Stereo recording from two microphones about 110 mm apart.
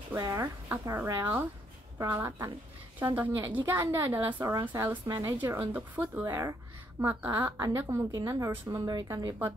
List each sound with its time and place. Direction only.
0.1 s a woman's voice: 25° right (ahead or behind)